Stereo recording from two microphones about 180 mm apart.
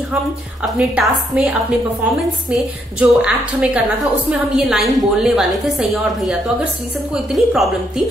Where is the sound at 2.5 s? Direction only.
5° right (ahead or behind).